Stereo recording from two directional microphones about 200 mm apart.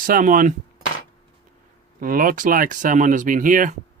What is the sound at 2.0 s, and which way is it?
Speech, 45° right (ahead or behind).